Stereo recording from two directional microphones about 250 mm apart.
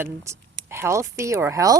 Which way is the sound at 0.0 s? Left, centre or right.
Centre.